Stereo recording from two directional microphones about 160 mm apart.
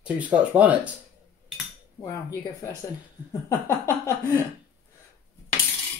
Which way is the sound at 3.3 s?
15° left (ahead or behind).